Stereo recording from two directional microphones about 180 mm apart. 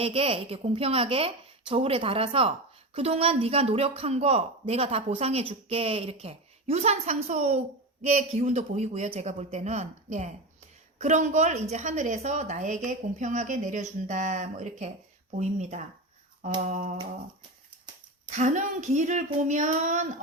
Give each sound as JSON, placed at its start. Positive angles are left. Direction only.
{"t": 0.0, "sound": "a woman's voice", "side_deg": -30}
{"t": 18.3, "sound": "speech", "side_deg": -40}